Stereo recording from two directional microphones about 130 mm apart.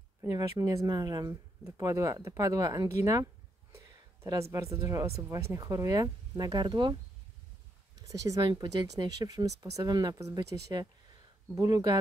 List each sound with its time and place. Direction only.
0.2 s speech: 30° right (ahead or behind)
8.0 s speech: 25° right (ahead or behind)